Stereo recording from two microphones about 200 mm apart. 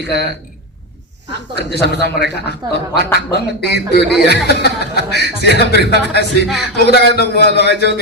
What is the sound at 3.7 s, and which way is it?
A man's voice, 55° left (ahead or behind).